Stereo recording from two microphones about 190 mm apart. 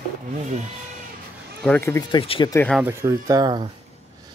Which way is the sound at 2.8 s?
15° right (ahead or behind).